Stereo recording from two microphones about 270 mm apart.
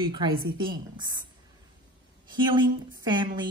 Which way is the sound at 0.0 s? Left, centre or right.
Centre.